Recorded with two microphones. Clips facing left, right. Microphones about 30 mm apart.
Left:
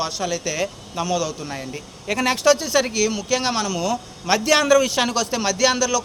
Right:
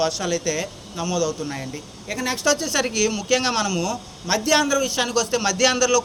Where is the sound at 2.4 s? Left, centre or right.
Left.